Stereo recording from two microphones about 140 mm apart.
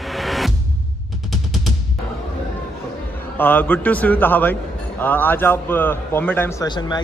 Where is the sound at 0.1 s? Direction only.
Centre (ahead or behind).